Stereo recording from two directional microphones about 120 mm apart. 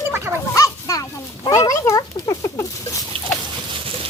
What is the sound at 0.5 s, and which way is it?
Dog, 30° left (ahead or behind).